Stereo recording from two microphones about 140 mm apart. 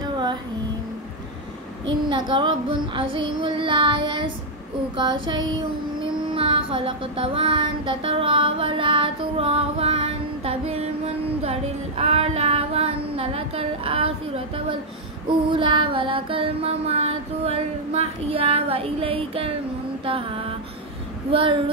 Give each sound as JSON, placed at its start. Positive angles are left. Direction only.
{"t": 0.0, "sound": "music", "side_deg": -30}
{"t": 1.9, "sound": "child singing", "side_deg": -35}
{"t": 15.2, "sound": "music", "side_deg": -35}
{"t": 20.1, "sound": "child singing", "side_deg": -40}